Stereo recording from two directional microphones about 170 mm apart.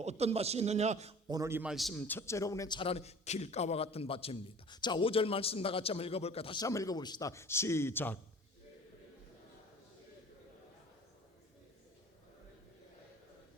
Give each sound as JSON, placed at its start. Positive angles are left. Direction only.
{"t": 0.0, "sound": "a man's voice", "side_deg": -40}
{"t": 1.3, "sound": "a man's voice", "side_deg": -15}
{"t": 1.7, "sound": "a man's voice", "side_deg": 0}